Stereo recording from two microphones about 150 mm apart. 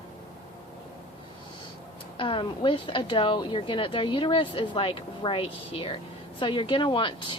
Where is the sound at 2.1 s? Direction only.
35° left (ahead or behind).